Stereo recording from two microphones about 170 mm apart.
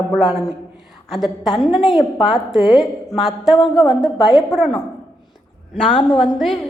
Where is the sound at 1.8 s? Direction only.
30° left (ahead or behind).